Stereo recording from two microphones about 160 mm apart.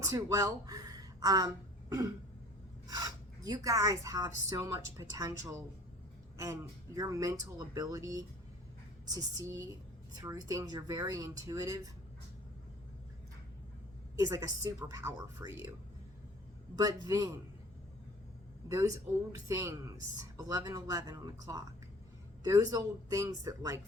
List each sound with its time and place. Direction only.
0.0 s a woman's voice: 20° right (ahead or behind)
2.8 s speech: 25° right (ahead or behind)
14.2 s speech: 20° right (ahead or behind)
16.7 s speech: 25° right (ahead or behind)
18.7 s speech: 20° right (ahead or behind)